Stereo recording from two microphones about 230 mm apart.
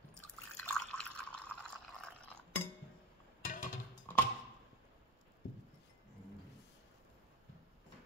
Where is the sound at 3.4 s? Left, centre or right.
Left.